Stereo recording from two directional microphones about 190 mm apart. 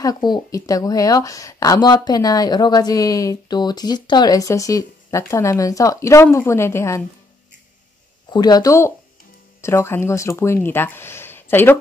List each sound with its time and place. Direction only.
0.0 s speech: 20° left (ahead or behind)
8.3 s speech: 20° left (ahead or behind)